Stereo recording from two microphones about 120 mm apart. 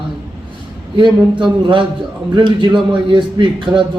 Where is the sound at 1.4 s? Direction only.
40° right (ahead or behind).